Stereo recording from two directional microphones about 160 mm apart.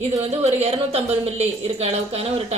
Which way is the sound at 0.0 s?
40° right (ahead or behind).